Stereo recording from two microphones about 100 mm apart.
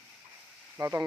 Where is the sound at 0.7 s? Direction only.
25° right (ahead or behind).